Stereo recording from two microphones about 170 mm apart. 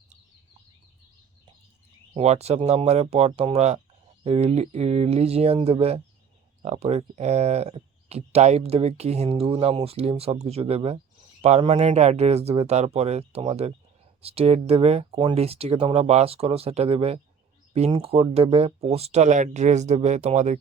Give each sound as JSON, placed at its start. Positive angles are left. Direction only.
{"t": 2.1, "sound": "speech", "side_deg": -40}